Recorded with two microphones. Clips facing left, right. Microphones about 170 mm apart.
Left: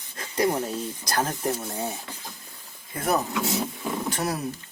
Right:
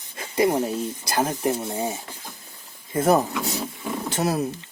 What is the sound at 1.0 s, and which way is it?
Speech, 10° right (ahead or behind).